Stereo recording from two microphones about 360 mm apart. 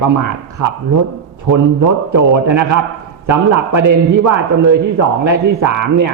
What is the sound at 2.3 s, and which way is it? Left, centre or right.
A man's voice, right.